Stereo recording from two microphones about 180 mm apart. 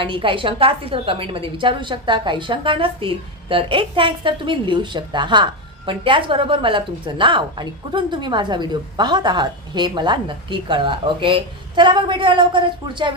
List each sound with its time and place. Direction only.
0.0 s a woman's voice: 30° right (ahead or behind)